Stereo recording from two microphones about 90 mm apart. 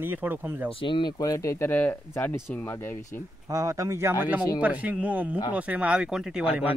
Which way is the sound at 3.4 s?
40° right (ahead or behind).